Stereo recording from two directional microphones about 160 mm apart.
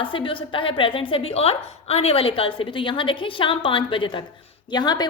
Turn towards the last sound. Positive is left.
turn(degrees=25)  # may be behind; listen again after turning